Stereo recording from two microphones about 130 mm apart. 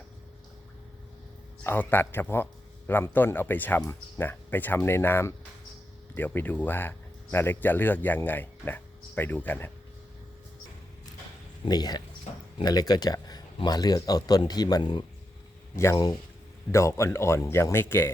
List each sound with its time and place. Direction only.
1.6 s speech: 15° left (ahead or behind)
11.6 s speech: 30° left (ahead or behind)
15.7 s speech: 20° left (ahead or behind)